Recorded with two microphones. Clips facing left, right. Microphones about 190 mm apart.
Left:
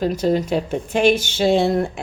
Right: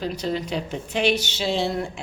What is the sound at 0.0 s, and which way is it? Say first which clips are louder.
Speech: left 8 dB; 45° left (ahead or behind).